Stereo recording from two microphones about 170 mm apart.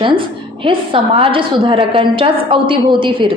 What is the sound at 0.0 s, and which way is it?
A woman's voice, 30° right (ahead or behind).